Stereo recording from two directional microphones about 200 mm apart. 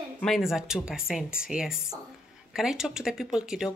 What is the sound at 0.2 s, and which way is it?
Speech, centre (ahead or behind).